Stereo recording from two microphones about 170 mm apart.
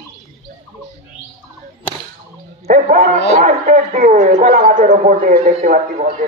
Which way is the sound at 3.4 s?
45° right (ahead or behind).